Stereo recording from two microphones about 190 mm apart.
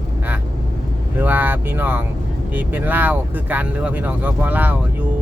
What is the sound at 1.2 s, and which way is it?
Speech, 10° right (ahead or behind).